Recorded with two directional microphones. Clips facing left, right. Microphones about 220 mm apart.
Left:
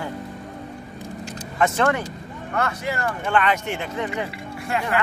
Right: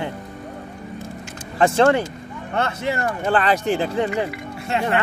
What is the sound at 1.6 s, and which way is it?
Speech, 30° right (ahead or behind).